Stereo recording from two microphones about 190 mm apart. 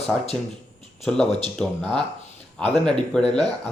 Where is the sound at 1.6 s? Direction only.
5° left (ahead or behind).